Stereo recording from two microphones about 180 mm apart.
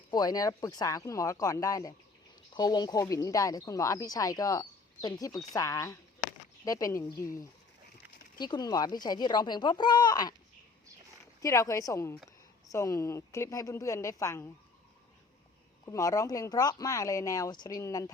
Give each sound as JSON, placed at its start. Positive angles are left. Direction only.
{"t": 0.1, "sound": "a woman's voice", "side_deg": 20}
{"t": 11.4, "sound": "a woman's voice", "side_deg": 15}
{"t": 15.9, "sound": "speech", "side_deg": 20}